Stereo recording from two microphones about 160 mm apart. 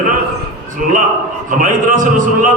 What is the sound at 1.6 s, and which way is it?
Speech, 55° right (ahead or behind).